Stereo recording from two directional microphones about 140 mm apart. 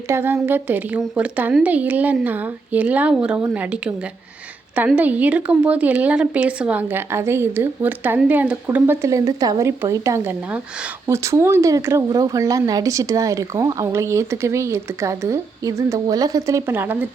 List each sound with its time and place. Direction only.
0.1 s speech: 20° right (ahead or behind)
4.9 s speech: 10° right (ahead or behind)